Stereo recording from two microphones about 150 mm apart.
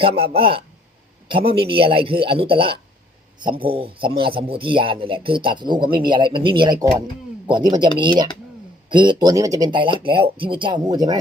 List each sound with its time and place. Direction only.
0.0 s speech: 35° right (ahead or behind)
8.9 s speech: 30° right (ahead or behind)